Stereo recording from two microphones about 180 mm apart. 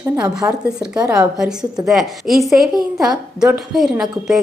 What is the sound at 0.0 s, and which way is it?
A woman's voice, 5° right (ahead or behind).